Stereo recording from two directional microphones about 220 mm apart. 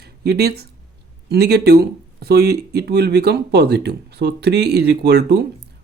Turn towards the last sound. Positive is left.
turn(degrees=-50)  # may be behind; listen again after turning